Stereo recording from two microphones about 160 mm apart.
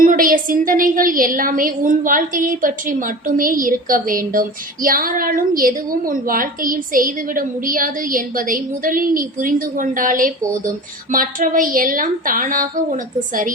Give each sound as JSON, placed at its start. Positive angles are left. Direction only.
{"t": 0.0, "sound": "a woman's voice", "side_deg": -60}